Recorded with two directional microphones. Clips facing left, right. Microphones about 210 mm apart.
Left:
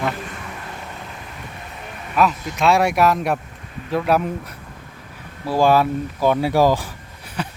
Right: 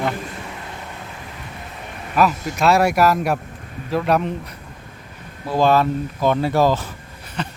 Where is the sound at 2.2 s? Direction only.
5° right (ahead or behind).